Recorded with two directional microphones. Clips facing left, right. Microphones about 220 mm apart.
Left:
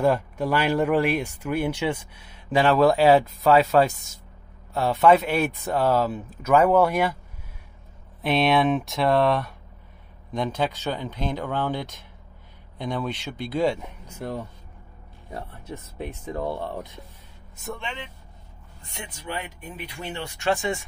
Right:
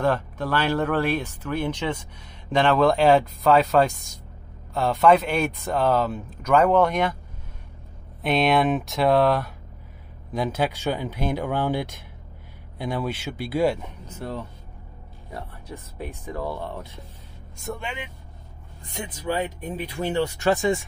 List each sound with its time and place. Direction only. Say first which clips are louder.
0.0 s speech: left 2 dB; 10° left (ahead or behind)
8.2 s speech: even; centre (ahead or behind)
14.0 s speech: left 1 dB; 10° left (ahead or behind)
15.3 s speech: left 1 dB; 25° left (ahead or behind)
17.6 s speech: right 2 dB; 5° right (ahead or behind)
19.3 s speech: right 8 dB; 40° right (ahead or behind)